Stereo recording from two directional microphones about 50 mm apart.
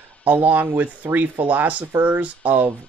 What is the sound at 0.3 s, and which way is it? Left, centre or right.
Speech, right.